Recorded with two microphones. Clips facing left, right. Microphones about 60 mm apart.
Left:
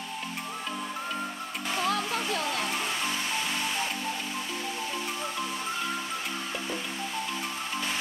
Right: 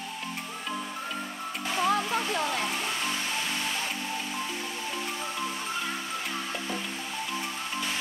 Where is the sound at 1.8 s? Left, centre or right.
Centre.